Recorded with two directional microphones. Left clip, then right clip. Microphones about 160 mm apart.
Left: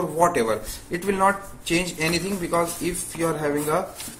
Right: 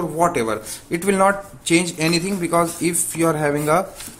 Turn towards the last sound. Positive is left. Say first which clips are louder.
# right 5 dB
turn(degrees=-45)  # may be behind; listen again after turning